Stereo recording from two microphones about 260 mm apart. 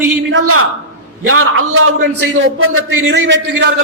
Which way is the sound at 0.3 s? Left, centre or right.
Right.